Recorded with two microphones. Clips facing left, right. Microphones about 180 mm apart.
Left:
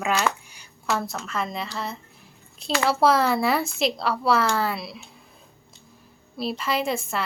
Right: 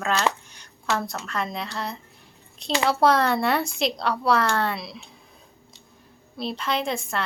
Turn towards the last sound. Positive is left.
turn(degrees=5)  # may be behind; listen again after turning